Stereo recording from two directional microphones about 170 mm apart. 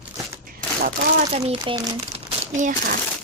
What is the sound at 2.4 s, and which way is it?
Speech, 45° right (ahead or behind).